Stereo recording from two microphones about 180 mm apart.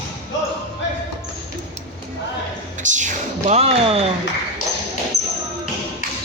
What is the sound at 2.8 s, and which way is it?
Speech, 45° right (ahead or behind).